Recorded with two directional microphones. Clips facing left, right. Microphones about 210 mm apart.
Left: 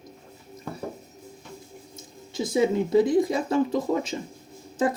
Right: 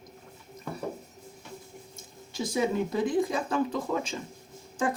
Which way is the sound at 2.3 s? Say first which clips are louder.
Left 5 dB; 20° left (ahead or behind).